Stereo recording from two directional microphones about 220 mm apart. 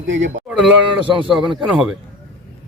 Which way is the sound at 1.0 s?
20° right (ahead or behind).